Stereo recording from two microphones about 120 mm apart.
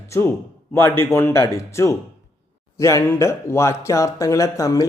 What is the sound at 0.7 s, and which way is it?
A man's voice, 20° left (ahead or behind).